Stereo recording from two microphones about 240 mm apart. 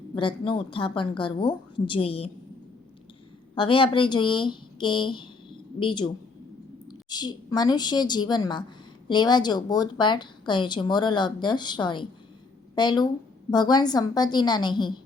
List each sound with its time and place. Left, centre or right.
0.1 s a woman's voice: left
3.5 s a woman's voice: left
7.1 s a woman's voice: centre